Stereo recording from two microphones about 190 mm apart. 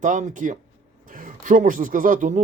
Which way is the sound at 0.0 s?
40° right (ahead or behind).